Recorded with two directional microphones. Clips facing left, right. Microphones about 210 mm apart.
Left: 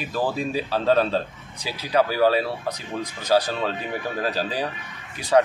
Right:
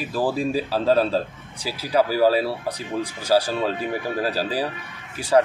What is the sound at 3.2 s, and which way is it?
A man's voice, 10° right (ahead or behind).